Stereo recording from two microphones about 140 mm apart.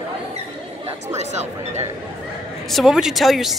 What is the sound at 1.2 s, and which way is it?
Speech, 55° right (ahead or behind).